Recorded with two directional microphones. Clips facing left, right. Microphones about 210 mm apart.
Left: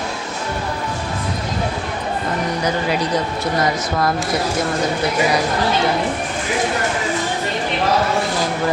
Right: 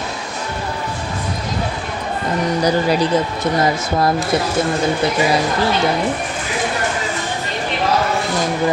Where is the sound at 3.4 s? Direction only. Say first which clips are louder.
Right 2 dB; 25° right (ahead or behind).